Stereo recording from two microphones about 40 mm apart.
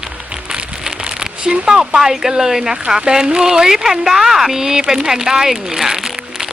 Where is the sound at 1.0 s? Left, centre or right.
Right.